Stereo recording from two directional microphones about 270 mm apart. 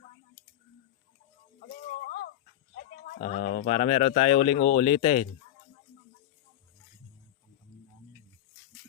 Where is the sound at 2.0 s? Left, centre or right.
Left.